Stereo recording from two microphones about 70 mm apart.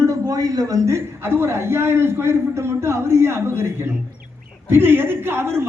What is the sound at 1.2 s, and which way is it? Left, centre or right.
A man's voice, right.